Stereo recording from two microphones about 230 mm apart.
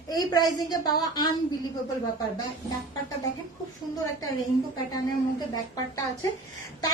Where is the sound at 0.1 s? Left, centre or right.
Centre.